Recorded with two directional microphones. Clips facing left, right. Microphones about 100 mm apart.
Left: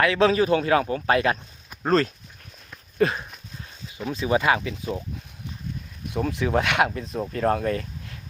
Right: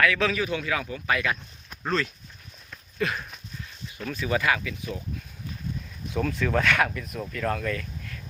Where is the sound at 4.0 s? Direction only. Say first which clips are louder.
Left 4 dB; 20° left (ahead or behind).